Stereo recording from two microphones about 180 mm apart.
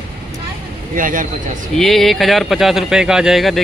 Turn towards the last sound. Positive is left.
turn(degrees=0)  # may be behind; listen again after turning